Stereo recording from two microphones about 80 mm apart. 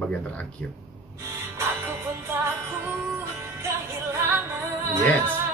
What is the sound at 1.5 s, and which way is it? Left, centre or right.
Music, right.